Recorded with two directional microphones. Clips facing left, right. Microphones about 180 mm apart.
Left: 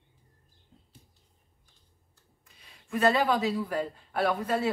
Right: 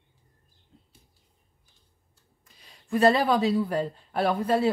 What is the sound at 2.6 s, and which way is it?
Speech, 30° right (ahead or behind).